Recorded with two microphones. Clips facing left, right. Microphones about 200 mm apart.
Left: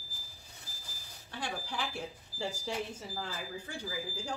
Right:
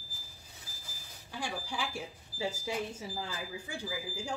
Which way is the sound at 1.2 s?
10° right (ahead or behind).